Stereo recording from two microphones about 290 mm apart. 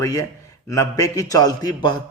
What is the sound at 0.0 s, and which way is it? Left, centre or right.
A man's voice, centre.